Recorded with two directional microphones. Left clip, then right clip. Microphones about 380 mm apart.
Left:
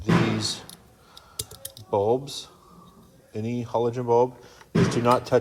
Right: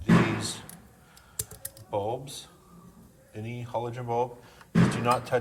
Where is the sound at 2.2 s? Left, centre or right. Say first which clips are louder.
Left 6 dB; centre.